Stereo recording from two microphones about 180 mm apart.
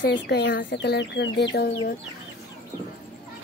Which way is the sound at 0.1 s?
70° left (ahead or behind).